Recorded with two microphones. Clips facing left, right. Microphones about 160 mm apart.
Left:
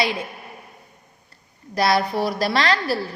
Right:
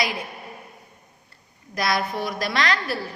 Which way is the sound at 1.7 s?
30° left (ahead or behind).